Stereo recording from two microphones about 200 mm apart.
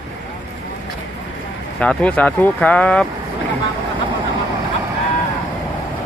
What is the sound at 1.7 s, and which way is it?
Speech, 5° left (ahead or behind).